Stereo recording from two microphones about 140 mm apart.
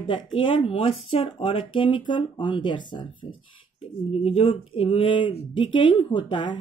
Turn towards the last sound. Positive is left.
turn(degrees=35)  # may be behind; listen again after turning